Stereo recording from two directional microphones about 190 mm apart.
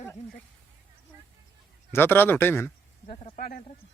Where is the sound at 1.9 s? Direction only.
10° left (ahead or behind).